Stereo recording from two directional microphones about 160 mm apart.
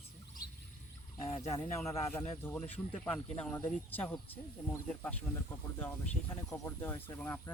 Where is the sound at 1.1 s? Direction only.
40° left (ahead or behind).